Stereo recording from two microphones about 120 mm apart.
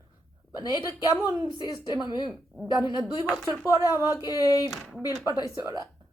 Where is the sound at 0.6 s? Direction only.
35° left (ahead or behind).